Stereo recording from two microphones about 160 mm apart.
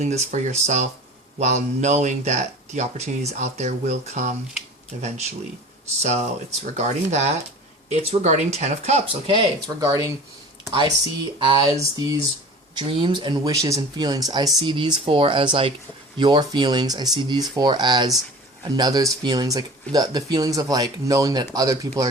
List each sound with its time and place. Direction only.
0.0 s speech: 45° right (ahead or behind); by 10.1 s 20° right (ahead or behind)
11.3 s speech: 30° right (ahead or behind)